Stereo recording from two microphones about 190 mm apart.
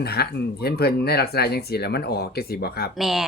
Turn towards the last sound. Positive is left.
turn(degrees=0)  # may be behind; listen again after turning